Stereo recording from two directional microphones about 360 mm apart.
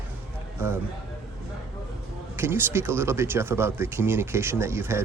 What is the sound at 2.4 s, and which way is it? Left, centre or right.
Speech, centre.